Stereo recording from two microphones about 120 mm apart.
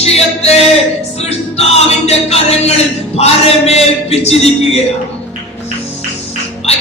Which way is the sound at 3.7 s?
60° left (ahead or behind).